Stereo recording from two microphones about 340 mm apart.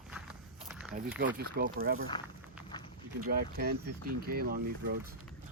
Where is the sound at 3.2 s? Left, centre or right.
Right.